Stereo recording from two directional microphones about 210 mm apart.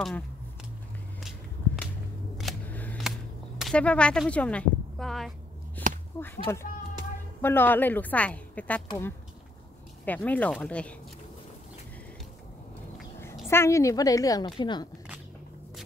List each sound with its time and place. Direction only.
2.3 s camera: 5° left (ahead or behind)
5.8 s a sound: 10° left (ahead or behind)
6.4 s a woman's voice: 15° left (ahead or behind)
13.5 s a woman's voice: 10° left (ahead or behind)